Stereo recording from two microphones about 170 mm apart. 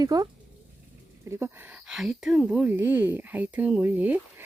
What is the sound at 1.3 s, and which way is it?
Speech, 15° right (ahead or behind).